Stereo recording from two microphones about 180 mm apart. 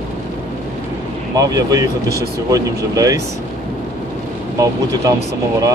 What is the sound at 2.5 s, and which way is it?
Speech, 20° right (ahead or behind).